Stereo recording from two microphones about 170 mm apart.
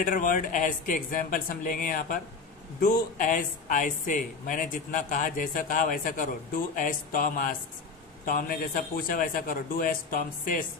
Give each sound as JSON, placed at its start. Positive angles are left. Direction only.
{"t": 0.0, "sound": "a man's voice", "side_deg": 50}